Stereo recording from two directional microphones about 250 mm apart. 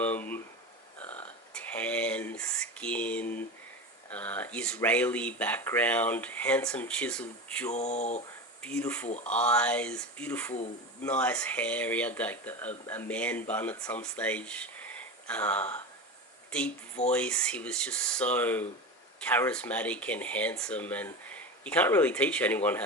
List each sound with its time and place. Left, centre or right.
0.0 s speech: centre
0.9 s burping: centre
4.1 s speech: centre
7.7 s speech: left
8.6 s speech: centre
9.0 s speech: left
9.3 s speech: centre